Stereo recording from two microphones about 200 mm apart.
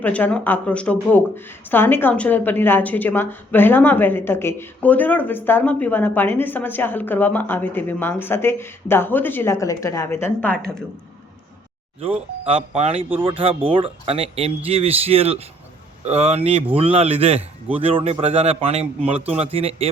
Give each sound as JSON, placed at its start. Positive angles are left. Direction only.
{"t": 0.0, "sound": "a woman's voice", "side_deg": 5}
{"t": 11.9, "sound": "speech", "side_deg": -30}